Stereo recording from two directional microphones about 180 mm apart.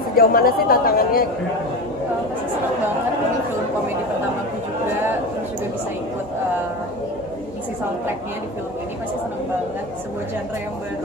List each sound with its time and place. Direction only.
0.1 s speech: 55° left (ahead or behind)